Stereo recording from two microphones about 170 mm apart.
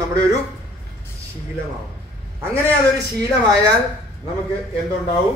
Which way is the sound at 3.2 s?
20° right (ahead or behind).